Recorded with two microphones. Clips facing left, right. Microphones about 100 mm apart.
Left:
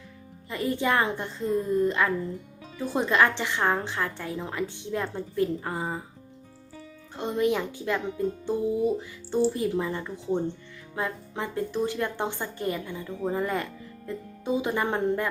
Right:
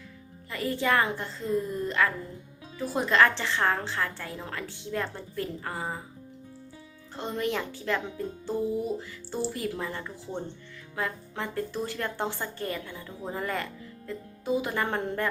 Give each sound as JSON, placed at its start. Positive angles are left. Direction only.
{"t": 0.5, "sound": "a woman's voice", "side_deg": 20}
{"t": 7.2, "sound": "a woman's voice", "side_deg": 20}